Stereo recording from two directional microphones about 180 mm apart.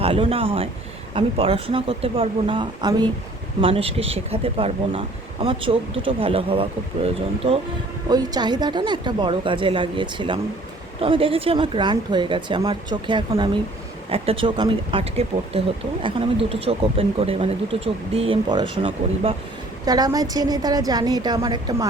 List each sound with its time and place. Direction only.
0.0 s speech: 30° right (ahead or behind)
8.1 s a woman's voice: 20° right (ahead or behind)
19.8 s a woman's voice: 20° right (ahead or behind)